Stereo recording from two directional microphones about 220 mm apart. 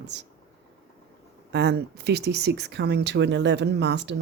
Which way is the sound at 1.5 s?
50° right (ahead or behind).